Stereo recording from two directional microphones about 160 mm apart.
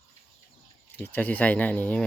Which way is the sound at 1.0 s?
10° left (ahead or behind).